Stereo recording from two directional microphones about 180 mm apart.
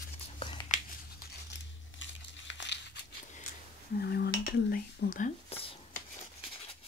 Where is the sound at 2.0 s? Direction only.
85° left.